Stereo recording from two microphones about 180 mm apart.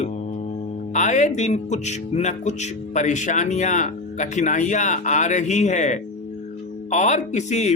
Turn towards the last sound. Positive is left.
turn(degrees=40)  # may be behind; listen again after turning